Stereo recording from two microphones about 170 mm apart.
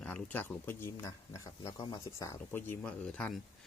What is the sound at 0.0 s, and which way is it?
Speech, 10° left (ahead or behind).